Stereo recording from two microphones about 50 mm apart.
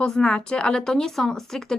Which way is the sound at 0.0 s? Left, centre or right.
Centre.